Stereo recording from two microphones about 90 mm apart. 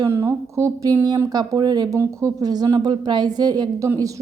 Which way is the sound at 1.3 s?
50° right (ahead or behind).